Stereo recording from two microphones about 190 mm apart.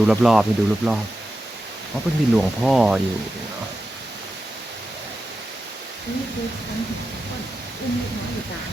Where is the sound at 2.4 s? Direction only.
Centre (ahead or behind).